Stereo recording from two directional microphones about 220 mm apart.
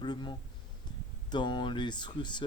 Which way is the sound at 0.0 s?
20° left (ahead or behind).